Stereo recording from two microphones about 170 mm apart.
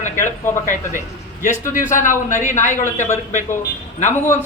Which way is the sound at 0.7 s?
45° left (ahead or behind).